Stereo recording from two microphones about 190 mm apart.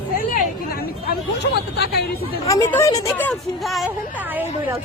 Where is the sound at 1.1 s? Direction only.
60° left (ahead or behind).